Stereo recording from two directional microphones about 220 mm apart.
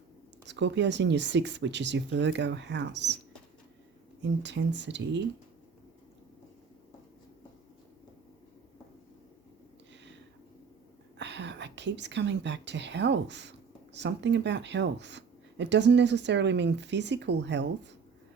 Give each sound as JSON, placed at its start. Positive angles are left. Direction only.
{"t": 0.4, "sound": "speech", "side_deg": -50}
{"t": 4.2, "sound": "speech", "side_deg": -55}
{"t": 11.2, "sound": "speech", "side_deg": -55}